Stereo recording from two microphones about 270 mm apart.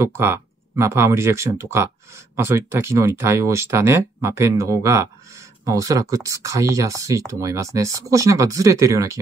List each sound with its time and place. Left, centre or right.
0.0 s speech: centre